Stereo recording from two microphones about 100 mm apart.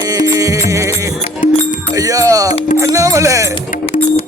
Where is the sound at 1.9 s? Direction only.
35° right (ahead or behind).